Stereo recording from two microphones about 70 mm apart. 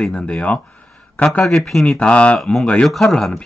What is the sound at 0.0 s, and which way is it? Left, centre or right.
Speech, centre.